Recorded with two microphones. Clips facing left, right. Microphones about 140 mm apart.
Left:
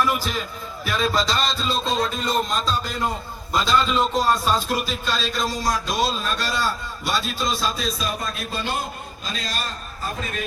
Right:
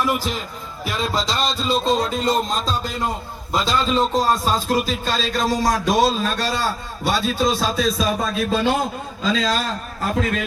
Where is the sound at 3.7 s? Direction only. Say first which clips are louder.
Right 1 dB; 35° right (ahead or behind); by 7.7 s 65° right (ahead or behind).